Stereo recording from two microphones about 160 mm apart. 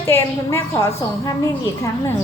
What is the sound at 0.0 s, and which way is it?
A woman's voice, 15° left (ahead or behind).